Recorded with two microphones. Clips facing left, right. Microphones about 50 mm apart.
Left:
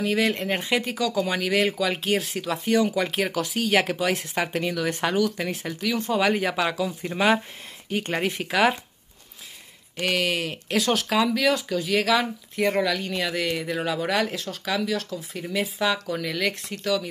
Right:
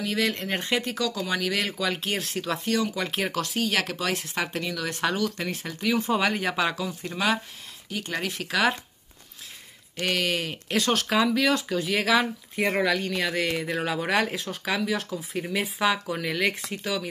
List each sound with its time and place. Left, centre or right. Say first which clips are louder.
0.0 s speech: left 3 dB; centre
5.2 s speech: left 3 dB; centre
10.0 s speech: left 2 dB; centre